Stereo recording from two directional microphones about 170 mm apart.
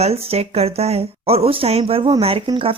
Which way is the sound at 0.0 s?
35° right (ahead or behind).